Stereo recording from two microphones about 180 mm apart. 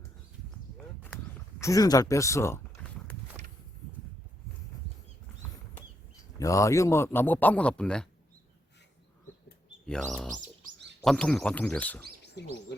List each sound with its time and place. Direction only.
1.0 s speech: 10° left (ahead or behind)
2.8 s a sound: 5° left (ahead or behind)
6.4 s a man's voice: 15° left (ahead or behind)
9.8 s a man's voice: 5° left (ahead or behind)
12.4 s speech: 70° left (ahead or behind)